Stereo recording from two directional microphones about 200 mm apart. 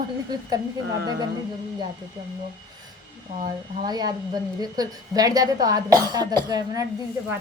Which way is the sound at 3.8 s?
20° right (ahead or behind).